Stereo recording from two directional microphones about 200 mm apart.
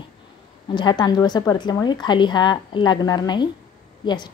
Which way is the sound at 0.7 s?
20° left (ahead or behind).